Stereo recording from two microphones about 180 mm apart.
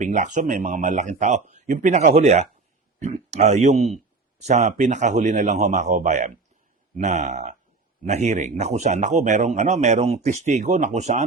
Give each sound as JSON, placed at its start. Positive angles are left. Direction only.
{"t": 0.0, "sound": "speech", "side_deg": -45}